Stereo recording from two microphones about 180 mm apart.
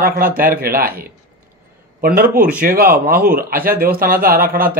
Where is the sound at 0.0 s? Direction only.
55° right (ahead or behind).